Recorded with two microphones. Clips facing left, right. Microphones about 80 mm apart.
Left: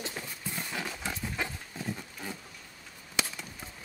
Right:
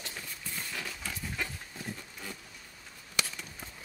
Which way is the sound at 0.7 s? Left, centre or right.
Centre.